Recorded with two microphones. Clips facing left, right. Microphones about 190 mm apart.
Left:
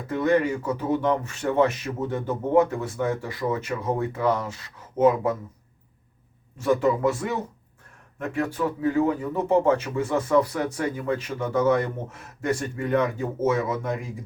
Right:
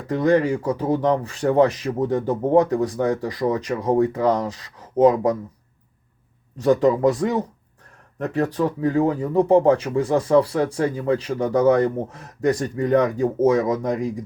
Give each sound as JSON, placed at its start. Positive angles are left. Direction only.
{"t": 0.1, "sound": "speech", "side_deg": -35}
{"t": 6.6, "sound": "speech", "side_deg": -35}